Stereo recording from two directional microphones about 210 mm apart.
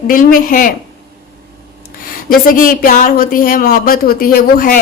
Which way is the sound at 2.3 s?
40° left (ahead or behind).